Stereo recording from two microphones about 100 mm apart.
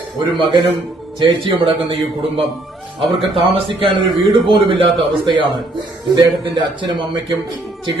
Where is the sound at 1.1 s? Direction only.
55° right (ahead or behind).